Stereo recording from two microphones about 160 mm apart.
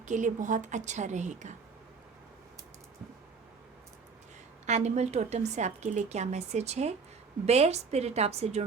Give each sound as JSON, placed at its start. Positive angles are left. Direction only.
{"t": 0.0, "sound": "a woman's voice", "side_deg": -50}
{"t": 4.6, "sound": "a woman's voice", "side_deg": -45}